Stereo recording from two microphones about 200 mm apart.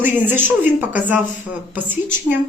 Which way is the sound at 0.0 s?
10° right (ahead or behind).